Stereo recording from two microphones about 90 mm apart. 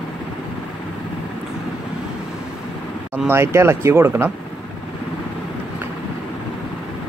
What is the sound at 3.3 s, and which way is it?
Speech, 30° right (ahead or behind).